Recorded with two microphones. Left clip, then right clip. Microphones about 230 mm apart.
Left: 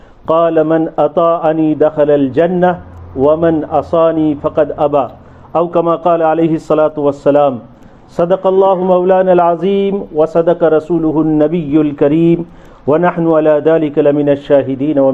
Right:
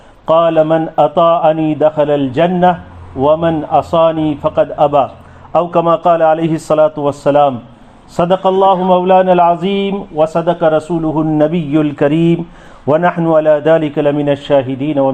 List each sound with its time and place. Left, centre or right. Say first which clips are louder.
0.3 s a man's voice: right 1 dB; right